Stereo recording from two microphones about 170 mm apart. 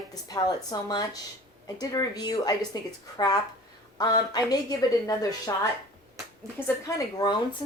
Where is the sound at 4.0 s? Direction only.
25° left (ahead or behind).